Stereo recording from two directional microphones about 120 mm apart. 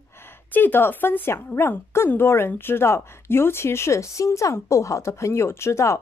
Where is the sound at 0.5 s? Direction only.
15° left (ahead or behind).